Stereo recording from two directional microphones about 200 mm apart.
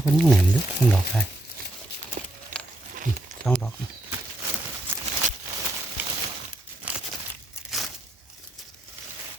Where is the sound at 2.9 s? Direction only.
40° right (ahead or behind).